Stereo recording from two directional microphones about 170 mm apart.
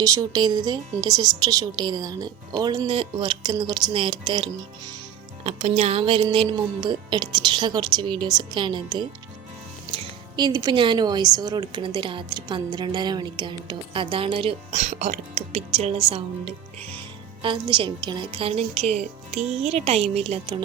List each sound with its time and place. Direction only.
0.0 s speech: 20° right (ahead or behind)
5.4 s a woman's voice: 40° right (ahead or behind)